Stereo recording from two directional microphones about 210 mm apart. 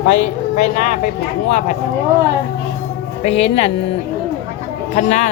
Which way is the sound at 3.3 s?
30° left (ahead or behind).